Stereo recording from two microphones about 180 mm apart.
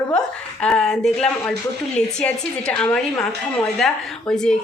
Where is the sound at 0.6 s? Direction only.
5° left (ahead or behind).